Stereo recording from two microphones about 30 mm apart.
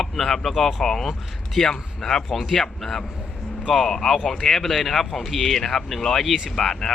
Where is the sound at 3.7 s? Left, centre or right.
Centre.